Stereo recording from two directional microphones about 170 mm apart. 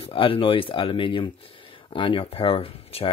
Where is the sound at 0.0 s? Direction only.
30° left (ahead or behind).